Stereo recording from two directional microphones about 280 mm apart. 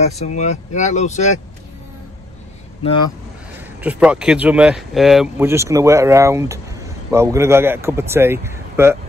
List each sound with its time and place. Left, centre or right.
0.2 s speech: left
3.5 s speech: centre